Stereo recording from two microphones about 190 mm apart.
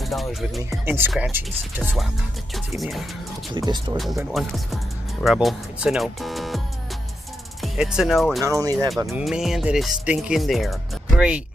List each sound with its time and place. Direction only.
0.0 s music: centre (ahead or behind)
0.7 s speech: 10° right (ahead or behind)
3.5 s speech: 20° right (ahead or behind)
3.9 s speech: centre (ahead or behind)
7.6 s speech: centre (ahead or behind)
8.5 s speech: 15° right (ahead or behind)
8.9 s speech: centre (ahead or behind)